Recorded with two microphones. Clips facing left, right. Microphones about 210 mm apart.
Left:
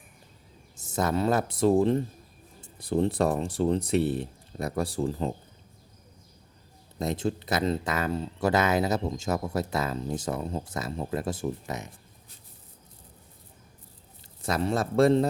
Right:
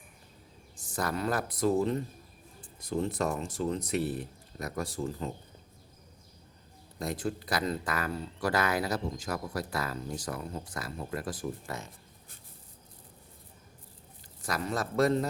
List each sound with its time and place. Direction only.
0.8 s speech: 25° left (ahead or behind)
2.6 s a sound: 30° left (ahead or behind)
3.0 s speech: 30° left (ahead or behind)
7.0 s speech: 25° left (ahead or behind)
14.4 s speech: 25° left (ahead or behind)